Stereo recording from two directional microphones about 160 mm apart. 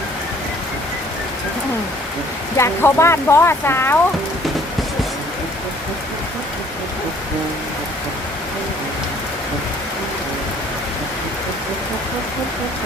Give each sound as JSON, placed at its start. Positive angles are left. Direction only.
{"t": 2.6, "sound": "speech", "side_deg": 15}